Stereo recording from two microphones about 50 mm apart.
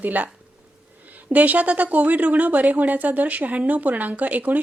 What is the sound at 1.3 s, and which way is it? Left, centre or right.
Speech, right.